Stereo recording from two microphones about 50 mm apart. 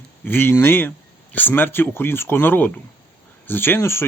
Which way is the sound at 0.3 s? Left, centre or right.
Left.